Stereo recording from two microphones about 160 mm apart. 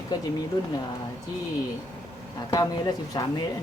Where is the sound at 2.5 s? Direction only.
25° left (ahead or behind).